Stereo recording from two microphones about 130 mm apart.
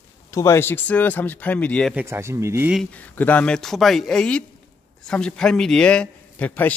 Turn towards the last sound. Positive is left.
turn(degrees=10)  # may be behind; listen again after turning